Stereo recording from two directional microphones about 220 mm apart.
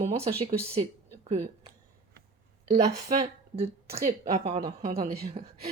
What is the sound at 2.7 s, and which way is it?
Speech, 30° right (ahead or behind).